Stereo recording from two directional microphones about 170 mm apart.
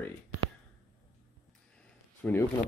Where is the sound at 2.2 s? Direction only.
5° left (ahead or behind).